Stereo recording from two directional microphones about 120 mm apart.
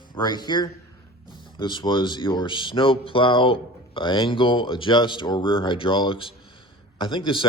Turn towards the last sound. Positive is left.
turn(degrees=45)  # may be behind; listen again after turning